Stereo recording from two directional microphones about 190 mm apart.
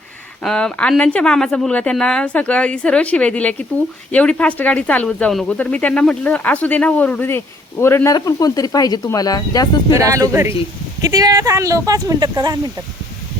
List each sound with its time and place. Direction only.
0.4 s speech: 5° left (ahead or behind); by 9.8 s 20° left (ahead or behind)
9.9 s speech: 15° right (ahead or behind)